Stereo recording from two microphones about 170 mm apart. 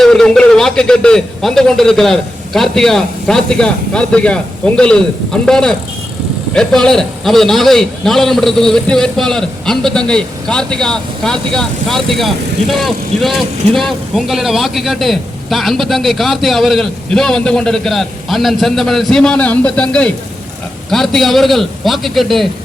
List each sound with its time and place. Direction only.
0.0 s a man's voice: 5° left (ahead or behind)